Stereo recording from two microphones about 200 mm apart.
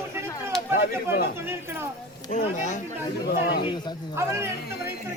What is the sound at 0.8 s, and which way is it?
Speech, 50° left (ahead or behind).